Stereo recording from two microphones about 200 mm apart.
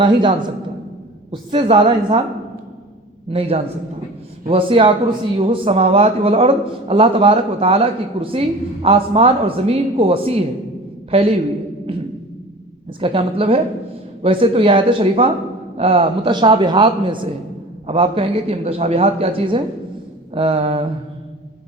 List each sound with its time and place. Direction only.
0.0 s a man's voice: 25° right (ahead or behind)
3.2 s a man's voice: 30° right (ahead or behind)
13.0 s a man's voice: 25° right (ahead or behind)